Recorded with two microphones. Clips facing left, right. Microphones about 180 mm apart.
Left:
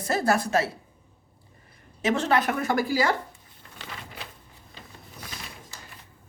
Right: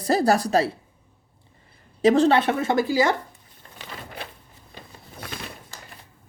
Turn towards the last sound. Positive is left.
turn(degrees=-60)  # may be behind; listen again after turning